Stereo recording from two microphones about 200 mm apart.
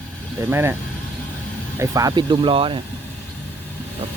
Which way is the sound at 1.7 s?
15° right (ahead or behind).